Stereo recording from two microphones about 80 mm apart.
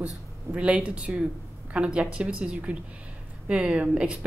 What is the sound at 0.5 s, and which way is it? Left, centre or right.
A woman's voice, centre.